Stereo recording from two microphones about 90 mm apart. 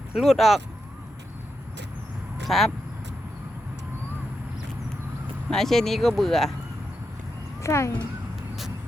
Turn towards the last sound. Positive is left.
turn(degrees=30)  # may be behind; listen again after turning